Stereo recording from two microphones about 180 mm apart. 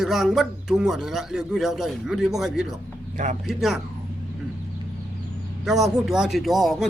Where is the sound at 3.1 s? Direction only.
40° right (ahead or behind).